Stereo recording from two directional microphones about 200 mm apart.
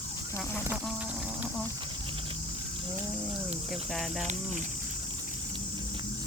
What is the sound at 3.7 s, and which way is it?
Speech, centre (ahead or behind).